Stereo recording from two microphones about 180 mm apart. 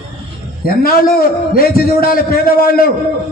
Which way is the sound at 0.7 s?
55° left (ahead or behind).